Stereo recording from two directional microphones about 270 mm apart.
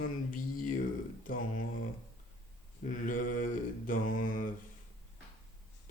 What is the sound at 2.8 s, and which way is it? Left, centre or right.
Mantra, left.